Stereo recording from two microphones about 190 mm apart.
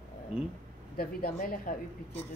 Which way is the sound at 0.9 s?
50° left (ahead or behind).